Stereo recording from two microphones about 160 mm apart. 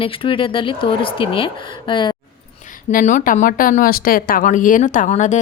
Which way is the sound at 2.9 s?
50° left (ahead or behind).